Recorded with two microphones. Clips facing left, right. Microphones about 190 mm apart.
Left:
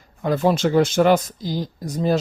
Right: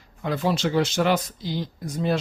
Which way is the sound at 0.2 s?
45° left (ahead or behind).